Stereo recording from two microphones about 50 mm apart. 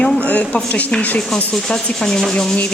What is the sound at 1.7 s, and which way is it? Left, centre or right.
Speech, centre.